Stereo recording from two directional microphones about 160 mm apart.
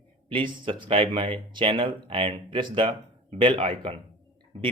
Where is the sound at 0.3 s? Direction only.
30° right (ahead or behind).